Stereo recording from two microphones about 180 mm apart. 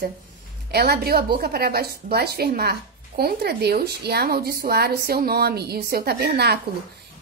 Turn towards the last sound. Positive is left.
turn(degrees=-60)  # may be behind; listen again after turning